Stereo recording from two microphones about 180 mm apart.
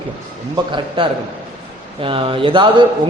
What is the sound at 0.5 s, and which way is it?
A man's voice, 25° right (ahead or behind).